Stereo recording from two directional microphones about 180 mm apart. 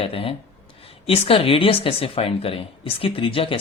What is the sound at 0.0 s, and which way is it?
Speech, 30° left (ahead or behind).